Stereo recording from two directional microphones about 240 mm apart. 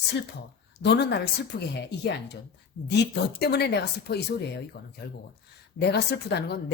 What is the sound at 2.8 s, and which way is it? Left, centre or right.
A woman's voice, left.